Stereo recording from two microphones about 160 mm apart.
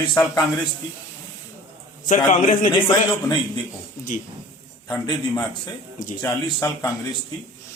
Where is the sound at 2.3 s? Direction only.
55° left (ahead or behind).